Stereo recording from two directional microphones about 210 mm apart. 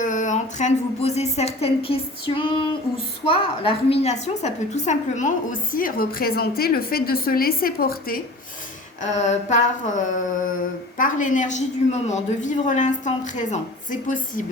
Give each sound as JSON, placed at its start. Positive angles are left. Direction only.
{"t": 0.0, "sound": "a woman's voice", "side_deg": 35}
{"t": 9.0, "sound": "a woman's voice", "side_deg": 35}
{"t": 10.9, "sound": "a woman's voice", "side_deg": 40}